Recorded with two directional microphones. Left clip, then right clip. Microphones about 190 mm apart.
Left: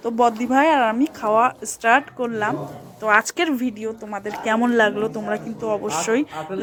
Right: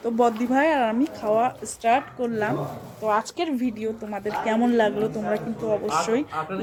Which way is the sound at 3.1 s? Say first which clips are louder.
Left 6 dB; 20° left (ahead or behind).